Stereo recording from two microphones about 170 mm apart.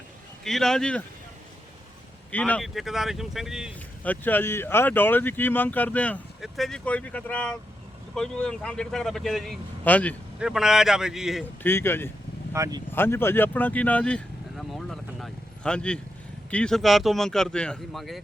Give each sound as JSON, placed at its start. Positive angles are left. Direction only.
{"t": 0.4, "sound": "speech", "side_deg": 0}
{"t": 2.3, "sound": "speech", "side_deg": 10}
{"t": 4.0, "sound": "speech", "side_deg": 10}
{"t": 10.4, "sound": "speech", "side_deg": -5}
{"t": 11.6, "sound": "speech", "side_deg": 15}
{"t": 12.5, "sound": "speech", "side_deg": -20}
{"t": 12.9, "sound": "speech", "side_deg": 15}
{"t": 14.7, "sound": "vehicle", "side_deg": 0}
{"t": 16.5, "sound": "speech", "side_deg": 5}